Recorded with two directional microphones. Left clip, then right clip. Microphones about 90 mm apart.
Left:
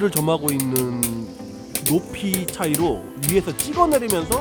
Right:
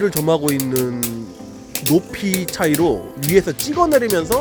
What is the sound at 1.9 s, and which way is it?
Speech, 25° right (ahead or behind).